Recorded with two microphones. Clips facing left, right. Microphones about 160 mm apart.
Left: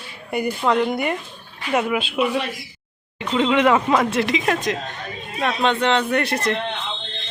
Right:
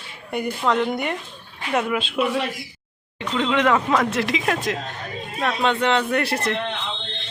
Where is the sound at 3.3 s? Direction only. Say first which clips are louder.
Left 3 dB; 10° left (ahead or behind).